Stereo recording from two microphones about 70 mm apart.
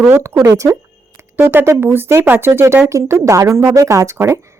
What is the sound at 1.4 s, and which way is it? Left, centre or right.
Speech, right.